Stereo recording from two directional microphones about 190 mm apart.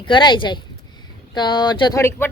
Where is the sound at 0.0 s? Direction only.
25° left (ahead or behind).